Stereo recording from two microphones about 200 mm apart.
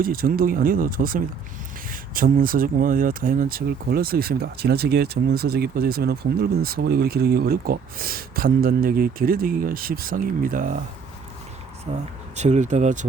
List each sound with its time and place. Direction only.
0.0 s speech: 45° right (ahead or behind)
11.9 s speech: 30° right (ahead or behind)